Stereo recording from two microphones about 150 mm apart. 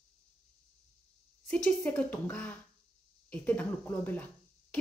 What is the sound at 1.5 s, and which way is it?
A woman's voice, 10° left (ahead or behind).